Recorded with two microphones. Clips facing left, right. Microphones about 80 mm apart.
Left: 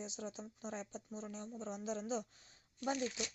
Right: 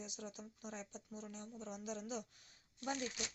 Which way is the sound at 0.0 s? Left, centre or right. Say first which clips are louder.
Left 4 dB; left.